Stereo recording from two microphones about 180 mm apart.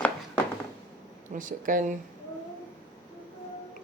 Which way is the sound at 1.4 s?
45° right (ahead or behind).